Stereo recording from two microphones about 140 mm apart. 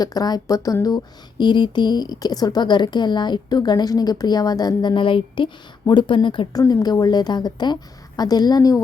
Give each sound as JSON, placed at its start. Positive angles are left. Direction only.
{"t": 0.0, "sound": "speech", "side_deg": 30}